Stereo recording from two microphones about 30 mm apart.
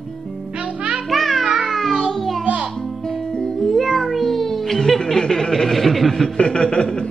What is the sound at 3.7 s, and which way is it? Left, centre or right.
Meow, centre.